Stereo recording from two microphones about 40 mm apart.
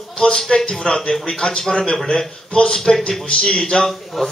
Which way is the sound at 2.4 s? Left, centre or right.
Left.